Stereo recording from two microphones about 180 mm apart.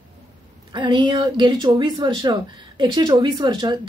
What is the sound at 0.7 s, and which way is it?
A woman's voice, 25° right (ahead or behind).